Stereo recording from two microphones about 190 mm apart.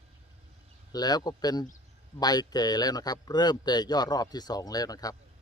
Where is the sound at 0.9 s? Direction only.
20° left (ahead or behind).